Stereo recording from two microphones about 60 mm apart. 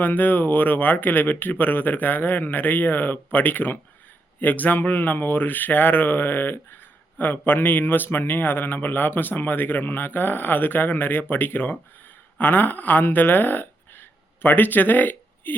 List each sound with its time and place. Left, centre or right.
0.0 s speech: left